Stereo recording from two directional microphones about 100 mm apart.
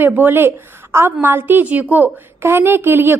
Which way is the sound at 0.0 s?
20° right (ahead or behind).